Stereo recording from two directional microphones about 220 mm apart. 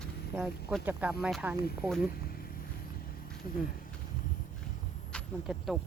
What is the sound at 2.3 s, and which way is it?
Vehicle, 40° left (ahead or behind).